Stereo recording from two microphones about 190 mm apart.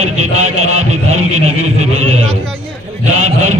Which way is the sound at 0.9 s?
35° right (ahead or behind).